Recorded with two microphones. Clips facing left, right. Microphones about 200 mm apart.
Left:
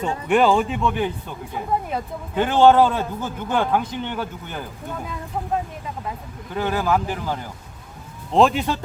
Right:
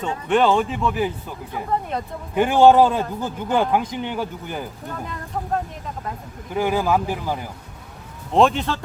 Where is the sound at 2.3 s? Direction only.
10° right (ahead or behind).